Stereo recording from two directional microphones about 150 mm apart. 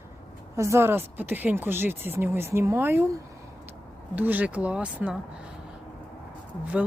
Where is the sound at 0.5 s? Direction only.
20° right (ahead or behind).